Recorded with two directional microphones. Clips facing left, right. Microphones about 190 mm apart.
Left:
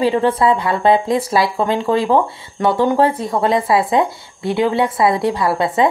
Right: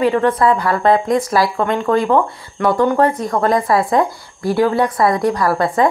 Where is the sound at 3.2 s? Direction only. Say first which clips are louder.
Right 1 dB; 30° left (ahead or behind).